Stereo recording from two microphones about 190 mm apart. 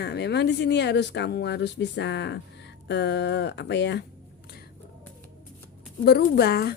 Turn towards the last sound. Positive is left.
turn(degrees=55)  # may be behind; listen again after turning